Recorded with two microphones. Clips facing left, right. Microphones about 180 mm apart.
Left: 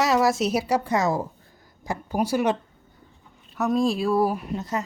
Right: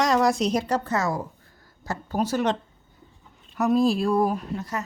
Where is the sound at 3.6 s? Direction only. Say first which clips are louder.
Right 2 dB; centre (ahead or behind).